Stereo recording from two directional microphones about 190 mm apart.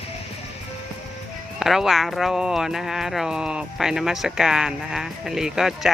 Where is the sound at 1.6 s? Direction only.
Centre (ahead or behind).